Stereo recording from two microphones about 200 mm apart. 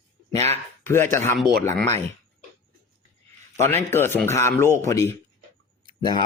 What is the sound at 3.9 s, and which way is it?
Speech, 10° left (ahead or behind).